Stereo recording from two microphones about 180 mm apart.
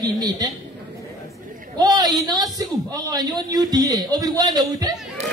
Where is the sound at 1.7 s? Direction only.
20° right (ahead or behind).